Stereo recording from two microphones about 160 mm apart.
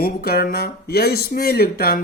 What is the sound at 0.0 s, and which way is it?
Speech, 70° left (ahead or behind).